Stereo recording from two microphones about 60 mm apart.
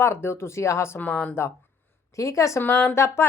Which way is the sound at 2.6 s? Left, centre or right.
Left.